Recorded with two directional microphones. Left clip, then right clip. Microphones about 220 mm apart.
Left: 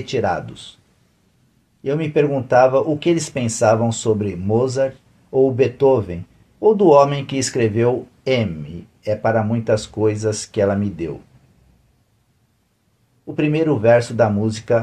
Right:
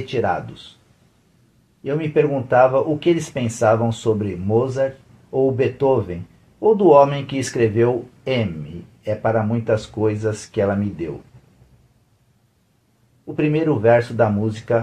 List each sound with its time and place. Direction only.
0.0 s speech: 40° left (ahead or behind)
1.8 s speech: 40° left (ahead or behind)
13.3 s speech: 40° left (ahead or behind)